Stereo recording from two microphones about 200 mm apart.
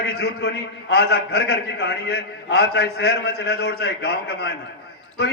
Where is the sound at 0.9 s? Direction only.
55° left (ahead or behind).